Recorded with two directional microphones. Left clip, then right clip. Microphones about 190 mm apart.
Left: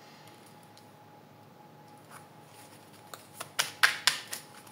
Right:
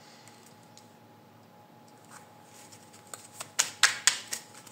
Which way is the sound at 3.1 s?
Centre (ahead or behind).